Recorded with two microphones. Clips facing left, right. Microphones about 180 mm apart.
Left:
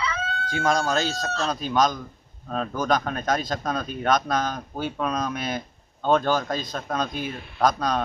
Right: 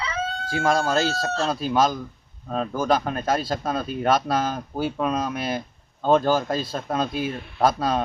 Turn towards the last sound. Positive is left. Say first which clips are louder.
# right 1 dB
turn(degrees=-5)  # may be behind; listen again after turning